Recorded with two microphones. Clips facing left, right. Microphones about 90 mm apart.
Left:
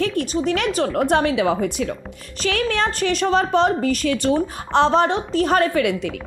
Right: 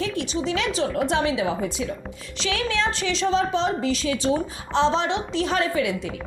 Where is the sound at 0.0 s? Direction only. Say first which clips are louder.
Left 5 dB; 55° left (ahead or behind).